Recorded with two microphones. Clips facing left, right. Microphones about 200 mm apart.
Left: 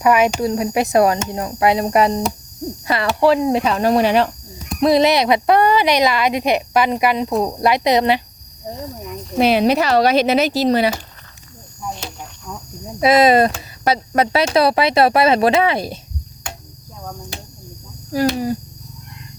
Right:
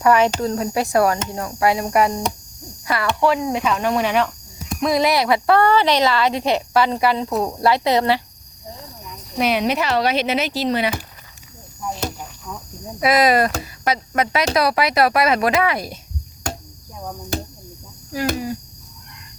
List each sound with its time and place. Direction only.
0.0 s a woman's voice: 10° left (ahead or behind)
9.4 s speech: 35° left (ahead or behind)
12.5 s cricket: 5° right (ahead or behind)
13.0 s speech: 25° left (ahead or behind)
16.4 s cricket: 40° right (ahead or behind)